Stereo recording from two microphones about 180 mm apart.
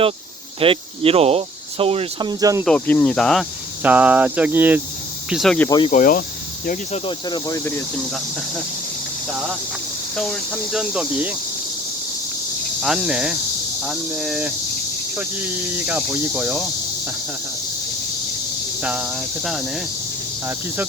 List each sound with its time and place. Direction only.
0.6 s speech: 30° right (ahead or behind)
2.6 s speech: 10° left (ahead or behind)
3.8 s speech: 10° right (ahead or behind)
5.3 s speech: centre (ahead or behind)
5.6 s speech: 25° left (ahead or behind)
5.9 s speech: 45° left (ahead or behind)
7.3 s speech: 20° left (ahead or behind)
10.2 s speech: centre (ahead or behind)
12.8 s speech: 5° right (ahead or behind)
18.8 s cricket: 5° right (ahead or behind)